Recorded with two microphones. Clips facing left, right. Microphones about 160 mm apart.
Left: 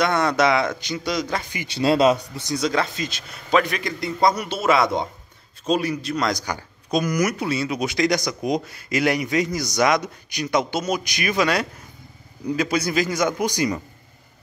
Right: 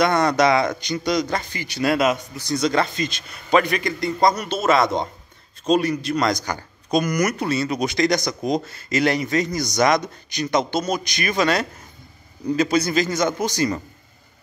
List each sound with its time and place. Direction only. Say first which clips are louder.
0.0 s a man's voice: right 2 dB; 5° left (ahead or behind)
1.7 s speech: left 2 dB; 30° left (ahead or behind)
2.4 s a man's voice: right 3 dB; 10° left (ahead or behind)